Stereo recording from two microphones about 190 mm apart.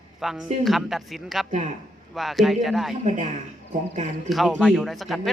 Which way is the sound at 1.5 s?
40° right (ahead or behind).